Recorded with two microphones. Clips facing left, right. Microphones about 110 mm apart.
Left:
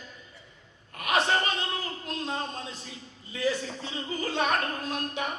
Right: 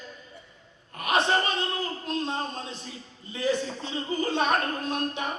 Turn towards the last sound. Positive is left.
turn(degrees=-30)  # may be behind; listen again after turning